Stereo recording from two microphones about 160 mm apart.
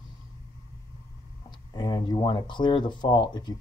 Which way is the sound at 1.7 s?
25° left (ahead or behind).